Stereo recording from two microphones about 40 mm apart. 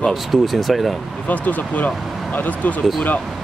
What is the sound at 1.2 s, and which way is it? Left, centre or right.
Speech, left.